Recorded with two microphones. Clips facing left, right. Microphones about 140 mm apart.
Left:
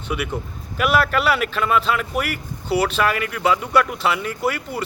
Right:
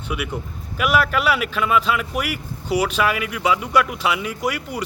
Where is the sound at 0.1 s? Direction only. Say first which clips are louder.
Left 2 dB; 5° right (ahead or behind).